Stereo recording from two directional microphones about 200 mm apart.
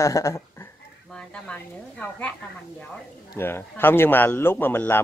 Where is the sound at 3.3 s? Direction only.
10° left (ahead or behind).